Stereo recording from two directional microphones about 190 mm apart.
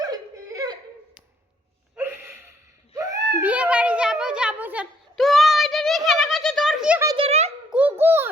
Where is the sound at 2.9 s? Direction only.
15° right (ahead or behind).